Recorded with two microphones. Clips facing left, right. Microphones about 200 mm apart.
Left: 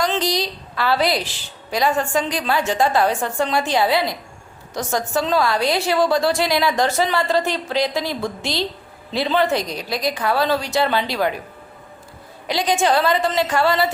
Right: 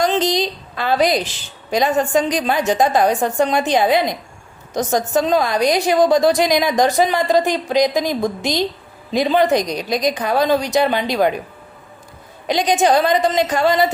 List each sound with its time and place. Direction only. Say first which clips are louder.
0.0 s a woman's voice: right 4 dB; 20° right (ahead or behind)
12.5 s a woman's voice: right 3 dB; 20° right (ahead or behind)